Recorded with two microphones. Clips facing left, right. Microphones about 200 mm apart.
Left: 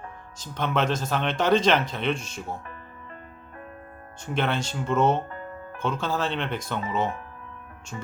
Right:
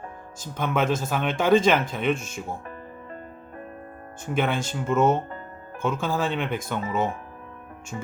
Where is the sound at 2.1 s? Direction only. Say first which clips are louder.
Right 3 dB; 50° right (ahead or behind).